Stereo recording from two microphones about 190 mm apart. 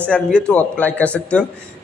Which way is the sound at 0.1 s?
5° left (ahead or behind).